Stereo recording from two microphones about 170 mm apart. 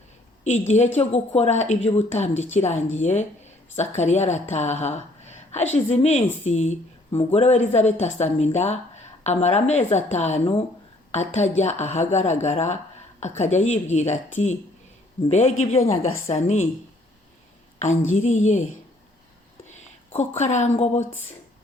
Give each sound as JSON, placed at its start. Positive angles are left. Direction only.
{"t": 0.4, "sound": "a woman's voice", "side_deg": 45}
{"t": 17.7, "sound": "a woman's voice", "side_deg": 45}
{"t": 20.1, "sound": "a woman's voice", "side_deg": 40}
{"t": 21.0, "sound": "speech", "side_deg": 10}